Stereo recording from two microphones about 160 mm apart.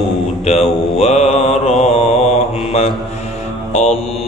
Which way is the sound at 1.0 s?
40° left (ahead or behind).